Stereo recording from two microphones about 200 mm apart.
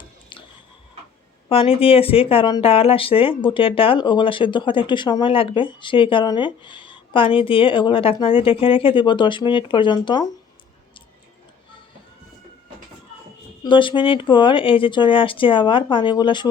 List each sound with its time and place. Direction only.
1.5 s speech: 25° left (ahead or behind)
13.7 s speech: 25° left (ahead or behind)